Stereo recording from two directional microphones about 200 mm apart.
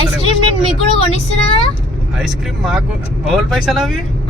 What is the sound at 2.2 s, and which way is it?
Speech, centre (ahead or behind).